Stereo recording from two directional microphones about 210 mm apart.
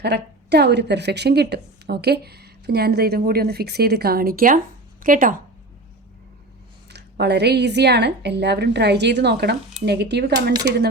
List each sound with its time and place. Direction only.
0.0 s a woman's voice: 50° right (ahead or behind)
6.8 s a woman's voice: 50° right (ahead or behind)